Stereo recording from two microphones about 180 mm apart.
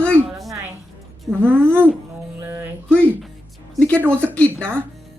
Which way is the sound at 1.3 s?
10° right (ahead or behind).